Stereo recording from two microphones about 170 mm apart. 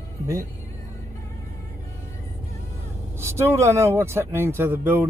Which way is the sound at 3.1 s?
15° right (ahead or behind).